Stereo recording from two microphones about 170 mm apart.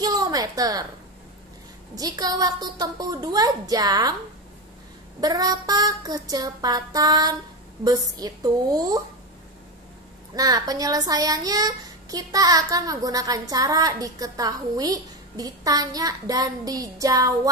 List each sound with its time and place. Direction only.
0.0 s a woman's voice: 20° right (ahead or behind)
2.0 s speech: 20° right (ahead or behind)
5.2 s speech: 20° right (ahead or behind)
10.3 s speech: 20° right (ahead or behind)